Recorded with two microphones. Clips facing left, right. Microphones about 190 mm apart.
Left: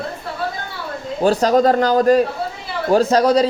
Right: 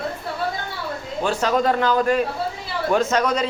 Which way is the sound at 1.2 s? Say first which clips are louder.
Left 6 dB; 35° left (ahead or behind).